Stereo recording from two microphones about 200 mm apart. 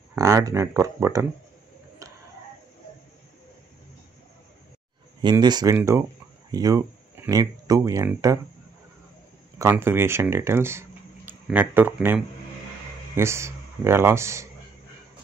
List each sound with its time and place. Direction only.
0.1 s speech: 15° right (ahead or behind)
5.2 s speech: 20° right (ahead or behind)
9.6 s a man's voice: 10° right (ahead or behind)